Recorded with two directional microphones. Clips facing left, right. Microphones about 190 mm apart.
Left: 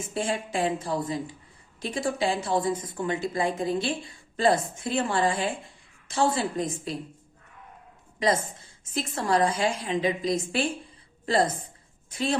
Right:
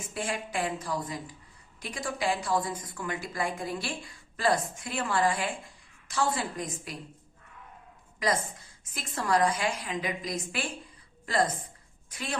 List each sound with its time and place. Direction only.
0.1 s a woman's voice: 25° left (ahead or behind)
8.2 s a woman's voice: 25° left (ahead or behind)
12.1 s a woman's voice: 30° left (ahead or behind)